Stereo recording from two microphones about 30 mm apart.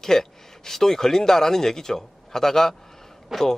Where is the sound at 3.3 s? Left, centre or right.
Centre.